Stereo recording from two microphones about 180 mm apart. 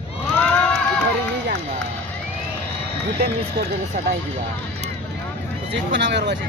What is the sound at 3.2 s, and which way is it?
Speech, 65° right (ahead or behind).